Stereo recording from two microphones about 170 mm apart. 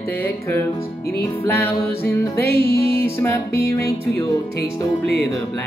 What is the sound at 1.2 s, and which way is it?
Music, 15° left (ahead or behind).